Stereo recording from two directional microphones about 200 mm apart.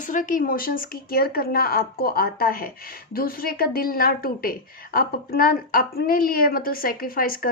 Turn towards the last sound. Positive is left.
turn(degrees=45)  # may be behind; listen again after turning